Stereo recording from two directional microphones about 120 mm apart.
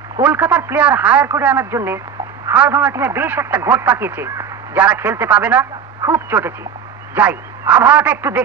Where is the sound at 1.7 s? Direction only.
20° right (ahead or behind).